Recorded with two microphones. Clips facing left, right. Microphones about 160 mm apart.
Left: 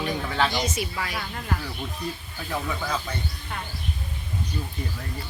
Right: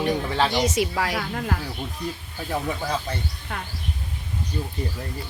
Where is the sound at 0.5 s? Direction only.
80° right.